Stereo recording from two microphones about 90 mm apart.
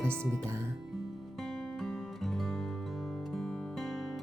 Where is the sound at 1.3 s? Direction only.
5° left (ahead or behind).